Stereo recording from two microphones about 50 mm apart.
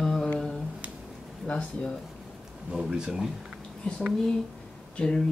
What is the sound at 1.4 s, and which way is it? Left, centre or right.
Speech, centre.